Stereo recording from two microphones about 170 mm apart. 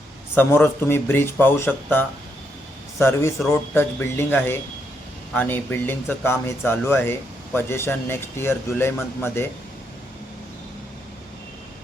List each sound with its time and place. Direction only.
0.3 s speech: 10° left (ahead or behind)